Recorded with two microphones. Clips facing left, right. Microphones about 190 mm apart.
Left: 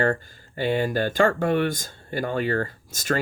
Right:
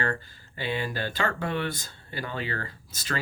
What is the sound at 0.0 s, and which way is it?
Speech, 45° left (ahead or behind).